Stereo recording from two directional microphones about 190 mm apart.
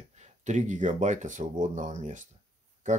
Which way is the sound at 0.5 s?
40° right (ahead or behind).